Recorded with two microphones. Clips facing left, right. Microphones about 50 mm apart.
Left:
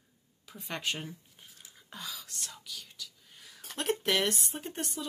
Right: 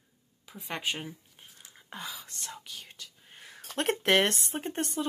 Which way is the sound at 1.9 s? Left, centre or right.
Right.